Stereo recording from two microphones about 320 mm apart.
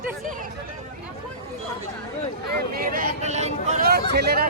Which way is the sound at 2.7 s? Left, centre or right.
Right.